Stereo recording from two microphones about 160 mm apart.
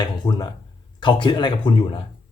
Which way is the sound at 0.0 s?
25° left (ahead or behind).